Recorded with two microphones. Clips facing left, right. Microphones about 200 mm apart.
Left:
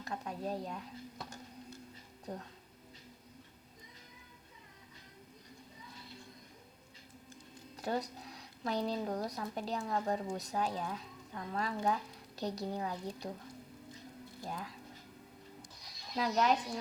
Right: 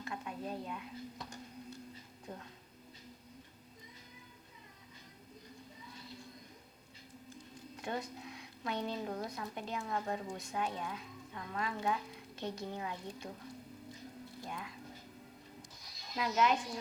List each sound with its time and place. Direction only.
0.0 s a sound: 40° left (ahead or behind)
2.3 s a woman's voice: 35° left (ahead or behind)
7.8 s a woman's voice: 35° left (ahead or behind)
14.4 s music: 35° left (ahead or behind)
16.1 s a woman's voice: 35° left (ahead or behind)